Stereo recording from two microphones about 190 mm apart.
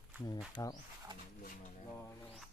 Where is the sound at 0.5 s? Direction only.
20° left (ahead or behind).